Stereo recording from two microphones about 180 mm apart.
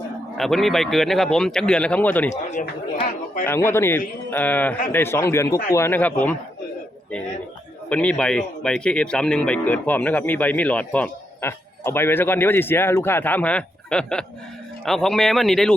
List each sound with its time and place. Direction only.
0.3 s speech: centre (ahead or behind)
2.3 s speech: 40° left (ahead or behind)
3.4 s speech: 10° left (ahead or behind)
7.9 s speech: 5° left (ahead or behind)